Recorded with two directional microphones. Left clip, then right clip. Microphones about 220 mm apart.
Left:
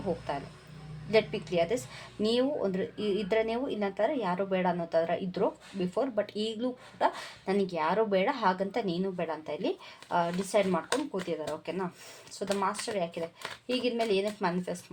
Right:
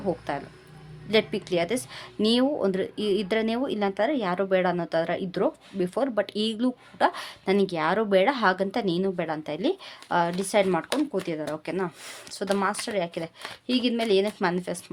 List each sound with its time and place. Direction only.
1.1 s speech: 40° right (ahead or behind)